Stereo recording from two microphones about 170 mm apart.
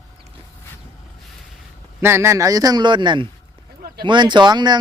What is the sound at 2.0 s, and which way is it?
A man's voice, 15° right (ahead or behind).